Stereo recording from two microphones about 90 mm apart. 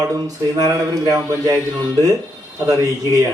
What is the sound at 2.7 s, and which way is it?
Speech, 35° right (ahead or behind).